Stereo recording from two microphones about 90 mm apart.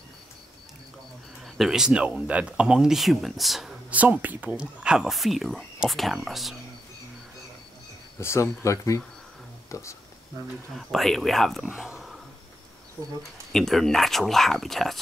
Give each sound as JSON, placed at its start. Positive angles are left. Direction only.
{"t": 1.4, "sound": "speech", "side_deg": -5}
{"t": 3.9, "sound": "speech", "side_deg": -15}
{"t": 8.2, "sound": "speech", "side_deg": 30}
{"t": 10.8, "sound": "speech", "side_deg": 0}
{"t": 11.6, "sound": "speech", "side_deg": -10}
{"t": 13.5, "sound": "speech", "side_deg": 5}